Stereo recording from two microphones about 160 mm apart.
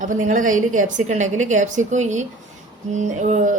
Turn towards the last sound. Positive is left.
turn(degrees=-50)  # may be behind; listen again after turning